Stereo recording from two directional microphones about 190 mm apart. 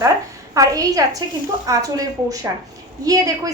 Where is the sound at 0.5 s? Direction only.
15° right (ahead or behind).